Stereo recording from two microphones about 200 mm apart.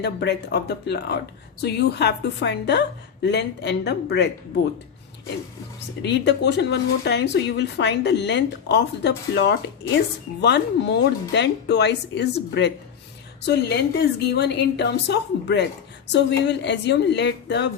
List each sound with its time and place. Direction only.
0.0 s a woman's voice: 55° left (ahead or behind)
6.0 s a woman's voice: 60° left (ahead or behind)